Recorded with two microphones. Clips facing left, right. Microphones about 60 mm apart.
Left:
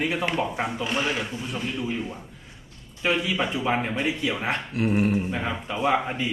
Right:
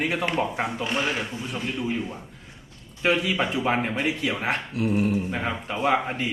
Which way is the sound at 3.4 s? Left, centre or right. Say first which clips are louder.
Right 1 dB; centre.